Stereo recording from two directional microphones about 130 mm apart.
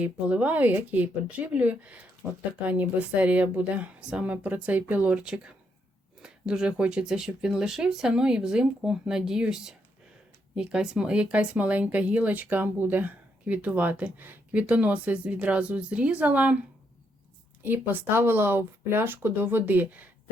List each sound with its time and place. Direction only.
0.0 s speech: 10° right (ahead or behind)
17.6 s speech: 15° right (ahead or behind)